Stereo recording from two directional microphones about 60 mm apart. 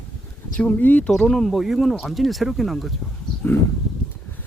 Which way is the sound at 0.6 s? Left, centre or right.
Left.